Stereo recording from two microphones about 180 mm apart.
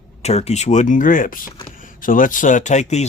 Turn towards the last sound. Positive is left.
turn(degrees=40)  # may be behind; listen again after turning